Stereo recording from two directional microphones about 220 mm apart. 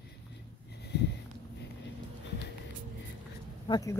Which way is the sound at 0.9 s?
50° left (ahead or behind).